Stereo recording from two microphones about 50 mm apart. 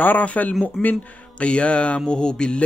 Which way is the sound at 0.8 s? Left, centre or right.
Centre.